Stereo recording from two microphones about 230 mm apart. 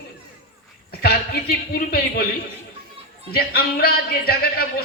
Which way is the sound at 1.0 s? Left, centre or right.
Left.